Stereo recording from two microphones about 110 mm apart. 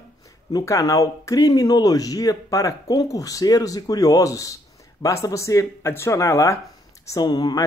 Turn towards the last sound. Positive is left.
turn(degrees=40)  # may be behind; listen again after turning